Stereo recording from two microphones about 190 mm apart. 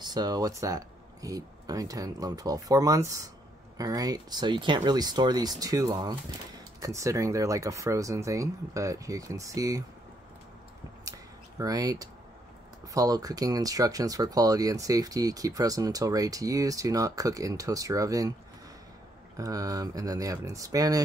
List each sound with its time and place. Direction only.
0.0 s speech: 20° right (ahead or behind)
11.1 s a sound: 20° right (ahead or behind)
12.8 s speech: 20° right (ahead or behind)
19.3 s speech: 20° right (ahead or behind)